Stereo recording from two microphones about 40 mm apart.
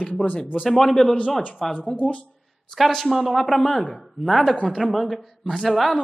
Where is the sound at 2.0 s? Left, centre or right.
Left.